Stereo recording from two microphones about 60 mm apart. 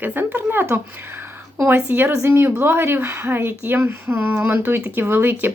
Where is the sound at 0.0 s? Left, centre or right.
Right.